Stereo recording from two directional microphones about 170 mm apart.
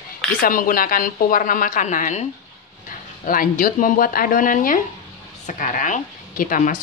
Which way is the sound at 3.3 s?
55° left (ahead or behind).